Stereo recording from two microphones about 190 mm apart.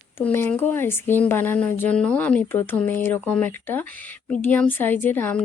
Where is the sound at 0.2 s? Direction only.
10° left (ahead or behind).